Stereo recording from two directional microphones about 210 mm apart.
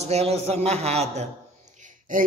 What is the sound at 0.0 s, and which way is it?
A man's voice, 30° right (ahead or behind).